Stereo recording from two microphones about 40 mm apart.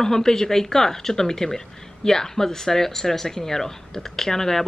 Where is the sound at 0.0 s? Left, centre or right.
Centre.